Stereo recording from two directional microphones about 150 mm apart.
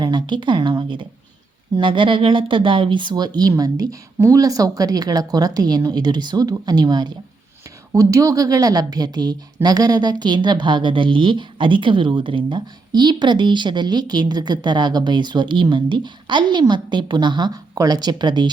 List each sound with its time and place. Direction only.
0.0 s speech: 30° right (ahead or behind)